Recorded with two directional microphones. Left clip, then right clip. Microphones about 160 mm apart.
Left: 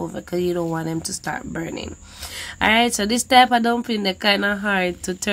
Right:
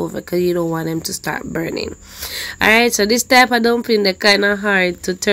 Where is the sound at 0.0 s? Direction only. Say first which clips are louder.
Right 5 dB; 20° right (ahead or behind).